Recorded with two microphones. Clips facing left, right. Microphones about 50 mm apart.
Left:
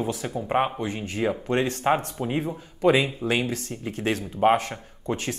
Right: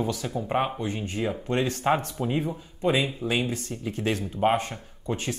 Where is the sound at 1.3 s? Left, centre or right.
Left.